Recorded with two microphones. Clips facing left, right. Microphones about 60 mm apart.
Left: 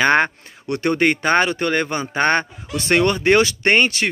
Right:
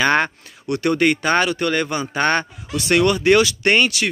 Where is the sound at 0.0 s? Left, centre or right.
Left.